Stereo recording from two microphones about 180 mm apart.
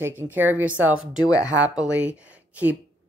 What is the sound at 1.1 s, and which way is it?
Speech, 20° left (ahead or behind).